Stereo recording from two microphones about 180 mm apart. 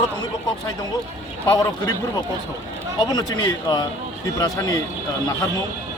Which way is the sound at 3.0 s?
20° left (ahead or behind).